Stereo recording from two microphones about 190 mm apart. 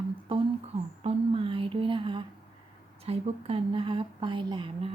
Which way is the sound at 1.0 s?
30° right (ahead or behind).